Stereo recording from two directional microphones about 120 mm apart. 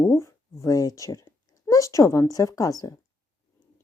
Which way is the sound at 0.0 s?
25° left (ahead or behind).